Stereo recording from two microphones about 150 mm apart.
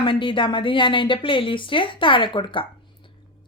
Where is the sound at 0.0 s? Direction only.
35° left (ahead or behind).